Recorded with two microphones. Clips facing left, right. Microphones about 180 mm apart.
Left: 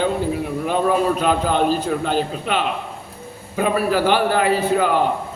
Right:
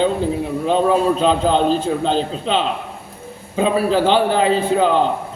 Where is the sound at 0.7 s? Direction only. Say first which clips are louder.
Right 3 dB; 25° right (ahead or behind).